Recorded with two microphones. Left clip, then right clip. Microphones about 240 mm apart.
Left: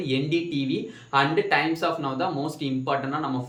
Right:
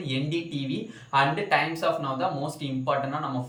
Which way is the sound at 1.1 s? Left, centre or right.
Centre.